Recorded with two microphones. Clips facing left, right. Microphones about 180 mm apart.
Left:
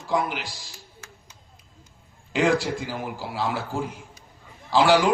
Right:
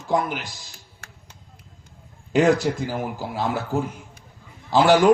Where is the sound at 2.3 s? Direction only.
45° right (ahead or behind).